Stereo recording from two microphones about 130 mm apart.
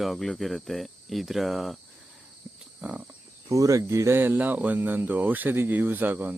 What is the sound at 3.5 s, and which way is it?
Speech, 25° right (ahead or behind).